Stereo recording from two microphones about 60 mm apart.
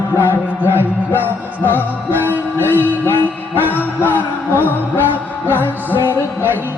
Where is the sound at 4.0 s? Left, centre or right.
Left.